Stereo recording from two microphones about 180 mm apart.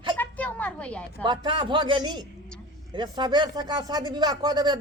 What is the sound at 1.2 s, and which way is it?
Speech, 25° right (ahead or behind).